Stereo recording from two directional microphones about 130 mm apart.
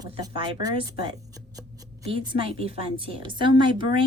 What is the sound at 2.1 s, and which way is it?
A woman's voice, 45° right (ahead or behind).